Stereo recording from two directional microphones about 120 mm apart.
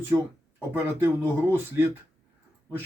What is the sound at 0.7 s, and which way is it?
Speech, 15° right (ahead or behind).